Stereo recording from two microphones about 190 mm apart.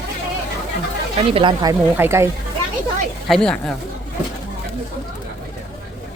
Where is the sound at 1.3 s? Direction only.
25° right (ahead or behind).